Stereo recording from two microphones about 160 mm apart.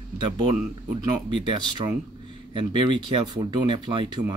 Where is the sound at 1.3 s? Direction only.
30° right (ahead or behind).